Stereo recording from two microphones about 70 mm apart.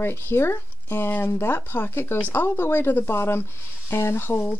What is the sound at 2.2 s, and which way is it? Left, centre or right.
Speech, left.